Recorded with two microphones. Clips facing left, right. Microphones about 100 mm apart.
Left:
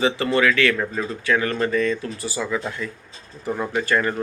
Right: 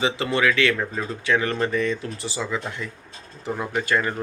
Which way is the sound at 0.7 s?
5° right (ahead or behind).